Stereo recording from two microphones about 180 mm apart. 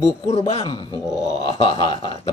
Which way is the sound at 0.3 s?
35° left (ahead or behind).